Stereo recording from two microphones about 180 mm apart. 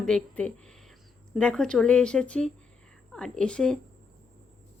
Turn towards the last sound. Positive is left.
turn(degrees=5)  # may be behind; listen again after turning